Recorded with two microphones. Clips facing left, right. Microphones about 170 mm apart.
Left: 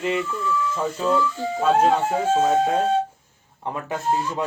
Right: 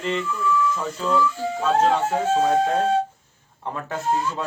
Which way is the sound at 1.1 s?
25° left (ahead or behind).